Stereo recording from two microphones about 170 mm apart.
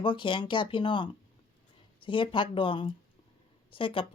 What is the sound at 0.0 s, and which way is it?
Speech, 30° left (ahead or behind).